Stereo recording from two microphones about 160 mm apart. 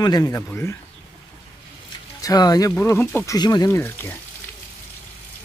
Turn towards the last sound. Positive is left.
turn(degrees=15)  # may be behind; listen again after turning